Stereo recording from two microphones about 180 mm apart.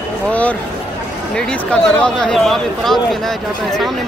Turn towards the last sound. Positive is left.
turn(degrees=0)  # may be behind; listen again after turning